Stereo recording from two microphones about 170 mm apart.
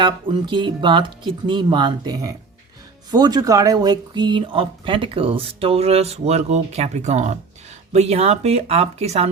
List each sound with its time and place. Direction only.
0.0 s speech: 30° right (ahead or behind)